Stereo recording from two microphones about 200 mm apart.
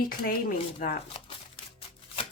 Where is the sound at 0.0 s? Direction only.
45° left (ahead or behind).